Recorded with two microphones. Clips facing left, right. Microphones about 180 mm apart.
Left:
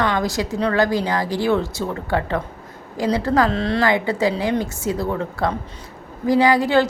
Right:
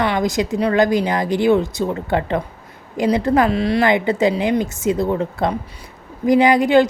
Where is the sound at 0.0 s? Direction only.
15° right (ahead or behind).